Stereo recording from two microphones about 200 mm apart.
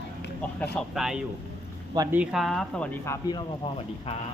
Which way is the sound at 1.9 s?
15° right (ahead or behind).